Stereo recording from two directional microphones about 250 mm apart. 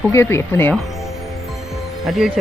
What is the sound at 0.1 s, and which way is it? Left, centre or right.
Speech, centre.